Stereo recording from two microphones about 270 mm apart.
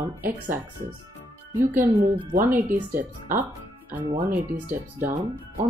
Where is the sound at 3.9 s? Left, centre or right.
Centre.